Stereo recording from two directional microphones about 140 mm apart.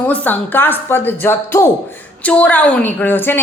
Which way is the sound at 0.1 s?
15° left (ahead or behind).